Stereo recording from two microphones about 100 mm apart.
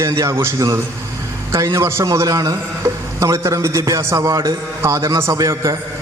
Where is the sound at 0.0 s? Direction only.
30° right (ahead or behind).